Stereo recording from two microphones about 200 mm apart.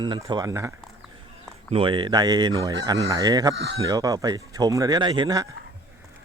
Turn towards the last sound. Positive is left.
turn(degrees=-20)  # may be behind; listen again after turning